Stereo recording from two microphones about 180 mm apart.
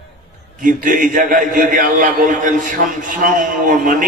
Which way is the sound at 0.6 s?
50° right (ahead or behind).